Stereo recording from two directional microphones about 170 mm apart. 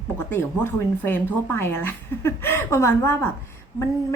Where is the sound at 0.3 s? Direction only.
15° left (ahead or behind).